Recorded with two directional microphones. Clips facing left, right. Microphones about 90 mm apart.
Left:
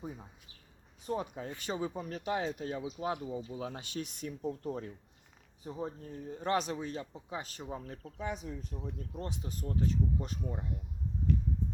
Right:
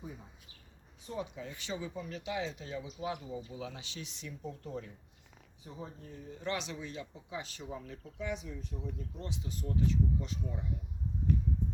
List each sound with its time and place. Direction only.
1.0 s speech: 45° left (ahead or behind)